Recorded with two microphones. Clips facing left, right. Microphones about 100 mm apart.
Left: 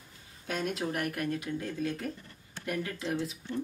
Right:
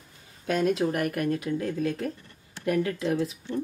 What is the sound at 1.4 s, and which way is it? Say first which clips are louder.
Speech: right 6 dB; 50° right (ahead or behind).